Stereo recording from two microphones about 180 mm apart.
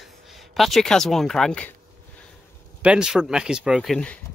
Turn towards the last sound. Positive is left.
turn(degrees=5)  # may be behind; listen again after turning